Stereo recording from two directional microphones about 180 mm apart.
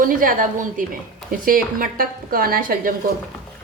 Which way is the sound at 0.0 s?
50° right (ahead or behind).